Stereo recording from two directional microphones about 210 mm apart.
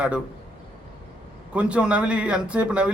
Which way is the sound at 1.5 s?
5° right (ahead or behind).